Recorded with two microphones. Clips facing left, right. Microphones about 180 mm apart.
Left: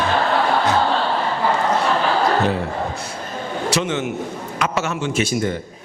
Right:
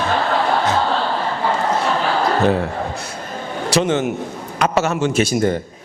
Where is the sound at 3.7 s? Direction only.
35° right (ahead or behind).